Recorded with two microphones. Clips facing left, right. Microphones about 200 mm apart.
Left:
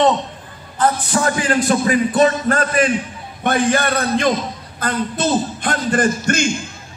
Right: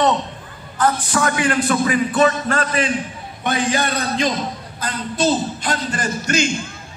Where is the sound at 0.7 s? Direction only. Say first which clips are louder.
Left 1 dB; 30° left (ahead or behind).